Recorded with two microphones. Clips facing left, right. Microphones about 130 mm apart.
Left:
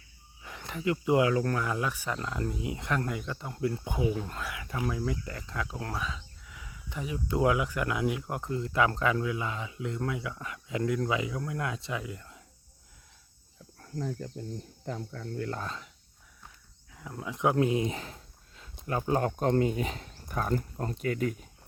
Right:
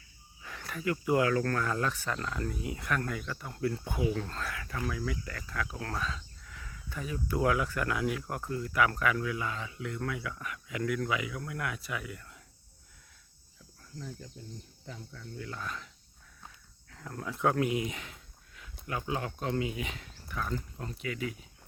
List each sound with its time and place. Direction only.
0.4 s speech: 20° left (ahead or behind)
13.7 s speech: 50° left (ahead or behind)
15.6 s speech: 25° left (ahead or behind)
16.9 s speech: 10° left (ahead or behind)
17.7 s a sound: 30° left (ahead or behind)
18.9 s speech: 40° left (ahead or behind)